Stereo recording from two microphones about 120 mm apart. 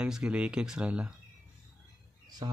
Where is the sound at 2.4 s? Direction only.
40° right (ahead or behind).